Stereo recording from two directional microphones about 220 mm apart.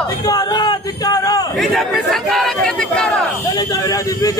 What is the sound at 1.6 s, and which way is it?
Speech, centre (ahead or behind).